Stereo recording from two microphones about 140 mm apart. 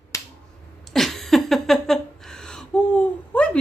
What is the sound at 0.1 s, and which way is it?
Finger snapping, 20° left (ahead or behind).